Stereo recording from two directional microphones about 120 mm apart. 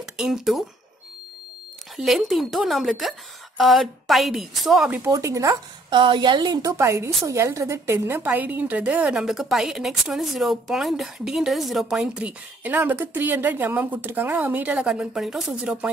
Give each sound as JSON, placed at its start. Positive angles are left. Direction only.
{"t": 0.0, "sound": "speech", "side_deg": -5}
{"t": 2.0, "sound": "a woman's voice", "side_deg": 0}
{"t": 4.9, "sound": "speech", "side_deg": -25}
{"t": 5.9, "sound": "a woman's voice", "side_deg": -40}